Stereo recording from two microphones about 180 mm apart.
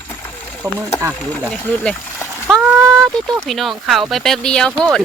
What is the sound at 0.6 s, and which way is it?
Speech, 20° right (ahead or behind).